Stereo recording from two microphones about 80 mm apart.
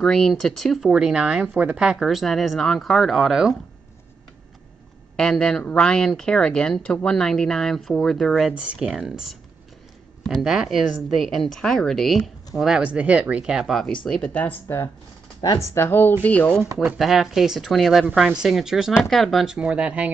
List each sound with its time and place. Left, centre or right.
0.0 s speech: centre
5.1 s speech: centre
12.5 s speech: centre
13.7 s speech: centre
15.7 s speech: left
17.0 s speech: centre
19.4 s speech: centre